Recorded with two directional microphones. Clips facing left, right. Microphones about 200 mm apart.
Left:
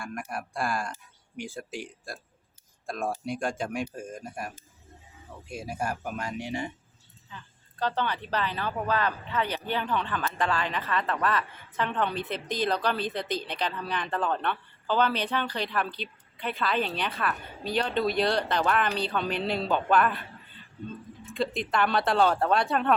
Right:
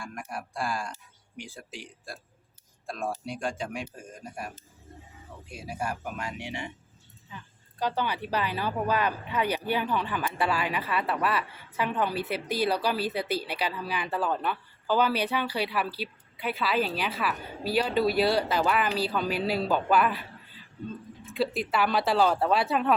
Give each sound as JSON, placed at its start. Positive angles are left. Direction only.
{"t": 0.3, "sound": "speech", "side_deg": 55}
{"t": 5.5, "sound": "speech", "side_deg": 45}
{"t": 7.8, "sound": "speech", "side_deg": -10}
{"t": 21.3, "sound": "speech", "side_deg": -5}